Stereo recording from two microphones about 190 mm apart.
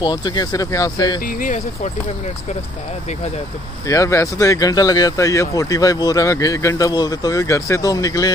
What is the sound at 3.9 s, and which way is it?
Speech, 15° left (ahead or behind).